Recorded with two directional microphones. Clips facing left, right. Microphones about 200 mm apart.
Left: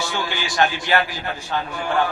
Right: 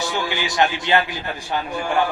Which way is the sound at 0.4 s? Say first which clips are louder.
Even; 20° right (ahead or behind).